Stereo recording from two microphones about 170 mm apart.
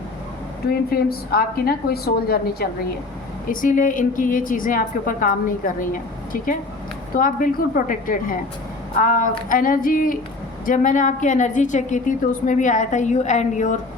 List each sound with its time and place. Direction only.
0.7 s a woman's voice: 65° left (ahead or behind)
3.5 s a woman's voice: 55° left (ahead or behind)